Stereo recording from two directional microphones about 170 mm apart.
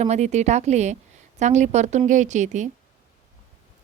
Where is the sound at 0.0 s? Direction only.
40° right (ahead or behind).